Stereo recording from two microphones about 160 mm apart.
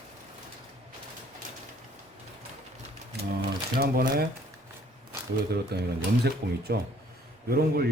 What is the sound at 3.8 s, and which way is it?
Speech, 70° right (ahead or behind).